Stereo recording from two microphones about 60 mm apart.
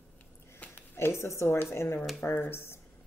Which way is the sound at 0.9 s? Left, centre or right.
Left.